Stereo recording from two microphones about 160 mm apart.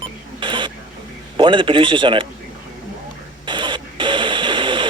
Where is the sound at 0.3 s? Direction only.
30° right (ahead or behind).